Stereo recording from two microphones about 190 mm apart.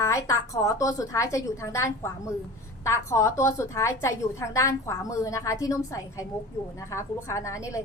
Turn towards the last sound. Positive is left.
turn(degrees=15)  # may be behind; listen again after turning